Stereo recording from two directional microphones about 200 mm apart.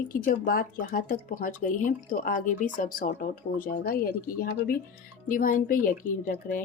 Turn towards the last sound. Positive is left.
turn(degrees=45)  # may be behind; listen again after turning